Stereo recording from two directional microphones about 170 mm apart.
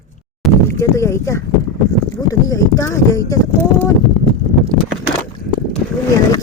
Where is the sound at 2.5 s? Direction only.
20° left (ahead or behind).